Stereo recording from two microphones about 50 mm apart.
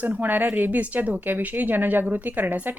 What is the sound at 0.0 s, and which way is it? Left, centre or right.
A woman's voice, right.